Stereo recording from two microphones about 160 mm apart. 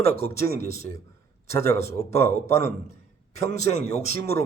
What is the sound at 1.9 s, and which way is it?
Speech, 40° left (ahead or behind).